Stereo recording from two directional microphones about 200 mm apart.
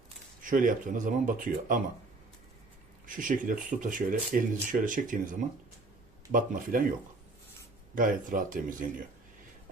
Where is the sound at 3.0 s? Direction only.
40° right (ahead or behind).